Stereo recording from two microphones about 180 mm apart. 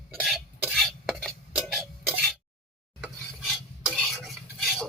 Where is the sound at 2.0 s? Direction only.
Centre (ahead or behind).